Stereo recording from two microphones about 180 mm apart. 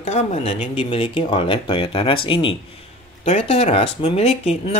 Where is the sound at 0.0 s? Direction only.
40° left (ahead or behind).